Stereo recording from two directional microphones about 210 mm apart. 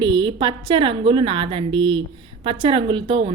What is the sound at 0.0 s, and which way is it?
A woman's voice, 25° right (ahead or behind).